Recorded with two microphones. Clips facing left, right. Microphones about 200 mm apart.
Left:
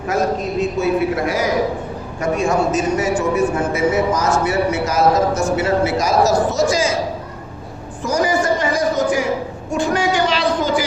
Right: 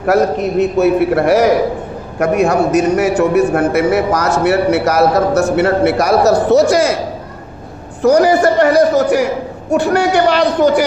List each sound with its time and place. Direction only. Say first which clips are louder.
0.0 s a man's voice: right 6 dB; 65° right (ahead or behind)
8.0 s a man's voice: right 8 dB; 65° right (ahead or behind)